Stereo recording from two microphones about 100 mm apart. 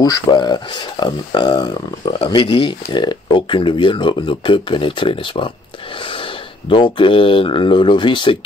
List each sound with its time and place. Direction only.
0.0 s speech: 45° left (ahead or behind)
2.2 s speech: 60° left (ahead or behind)